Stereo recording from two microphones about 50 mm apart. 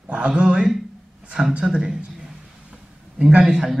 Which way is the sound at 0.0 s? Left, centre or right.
Right.